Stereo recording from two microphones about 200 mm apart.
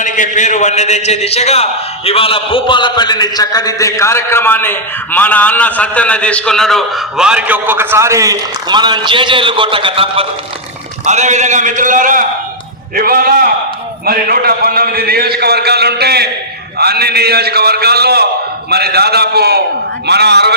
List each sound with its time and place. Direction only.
0.0 s a man's voice: 40° left (ahead or behind); by 20.6 s 55° right (ahead or behind)